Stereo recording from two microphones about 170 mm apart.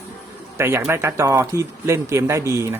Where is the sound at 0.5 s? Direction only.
15° right (ahead or behind).